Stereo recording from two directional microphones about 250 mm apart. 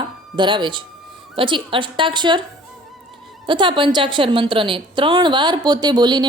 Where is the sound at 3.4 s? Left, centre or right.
Centre.